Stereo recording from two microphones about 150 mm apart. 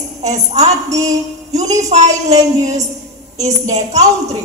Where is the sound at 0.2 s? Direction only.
50° right (ahead or behind).